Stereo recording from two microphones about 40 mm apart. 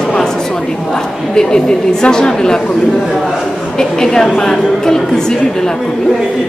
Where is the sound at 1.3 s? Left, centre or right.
Centre.